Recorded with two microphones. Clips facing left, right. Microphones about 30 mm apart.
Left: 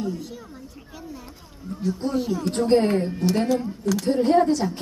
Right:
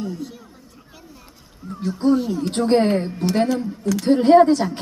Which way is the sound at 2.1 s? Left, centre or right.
Centre.